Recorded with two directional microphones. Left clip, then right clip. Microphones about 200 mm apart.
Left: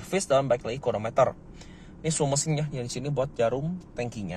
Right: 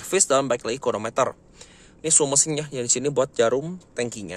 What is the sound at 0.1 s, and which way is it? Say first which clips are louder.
A man's voice: right 3 dB; 35° right (ahead or behind).